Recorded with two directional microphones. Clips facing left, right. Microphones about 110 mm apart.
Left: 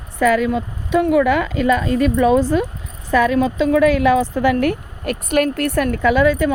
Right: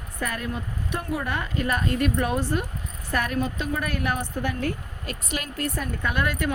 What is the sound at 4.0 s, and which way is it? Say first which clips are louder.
A woman's voice: left 12 dB; 90° left.